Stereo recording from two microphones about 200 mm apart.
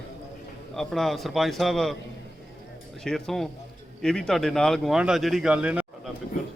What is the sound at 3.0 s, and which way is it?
Speech, centre (ahead or behind).